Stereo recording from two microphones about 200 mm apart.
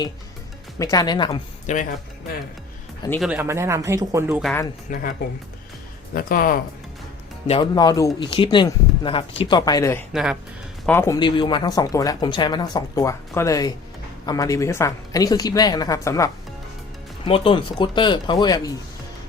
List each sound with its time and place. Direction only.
0.8 s speech: 20° left (ahead or behind)
1.6 s speech: 40° left (ahead or behind)
3.2 s speech: 5° right (ahead or behind)
4.9 s speech: 40° left (ahead or behind)
6.1 s speech: 45° left (ahead or behind)
7.4 s speech: 25° left (ahead or behind)
10.1 s speech: centre (ahead or behind)
10.8 s a woman's voice: 10° left (ahead or behind)
17.2 s speech: 25° left (ahead or behind)